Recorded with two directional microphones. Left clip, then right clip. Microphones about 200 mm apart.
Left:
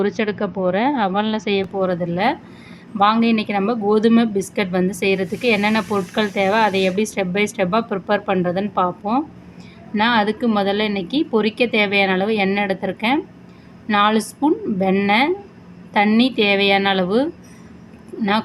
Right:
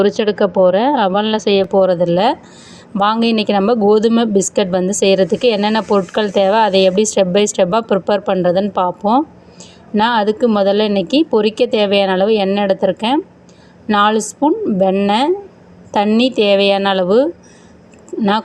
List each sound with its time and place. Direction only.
0.3 s speech: 20° right (ahead or behind)